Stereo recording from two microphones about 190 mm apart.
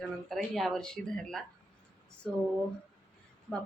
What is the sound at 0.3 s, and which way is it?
Speech, centre (ahead or behind).